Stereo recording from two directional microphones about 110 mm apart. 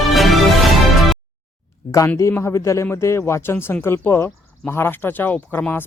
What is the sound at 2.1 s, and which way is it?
Speech, 25° left (ahead or behind).